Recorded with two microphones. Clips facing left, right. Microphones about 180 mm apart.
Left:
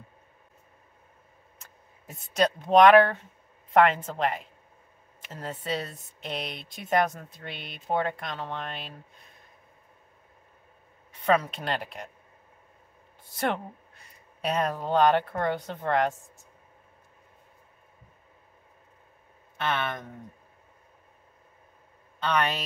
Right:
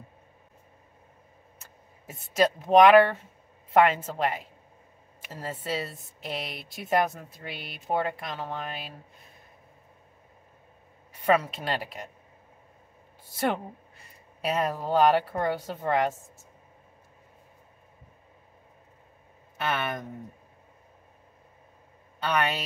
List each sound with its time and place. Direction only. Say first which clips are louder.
2.0 s a woman's voice: right 1 dB; 5° right (ahead or behind)
11.2 s a woman's voice: even; 5° right (ahead or behind)
13.3 s speech: right 1 dB; 5° right (ahead or behind)
19.5 s speech: even; 10° right (ahead or behind)
22.2 s a woman's voice: even; 5° right (ahead or behind)